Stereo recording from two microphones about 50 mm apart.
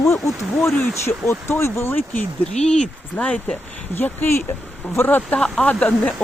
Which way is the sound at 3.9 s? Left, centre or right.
Left.